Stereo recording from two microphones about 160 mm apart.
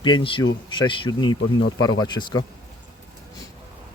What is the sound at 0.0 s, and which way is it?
Speech, 30° left (ahead or behind).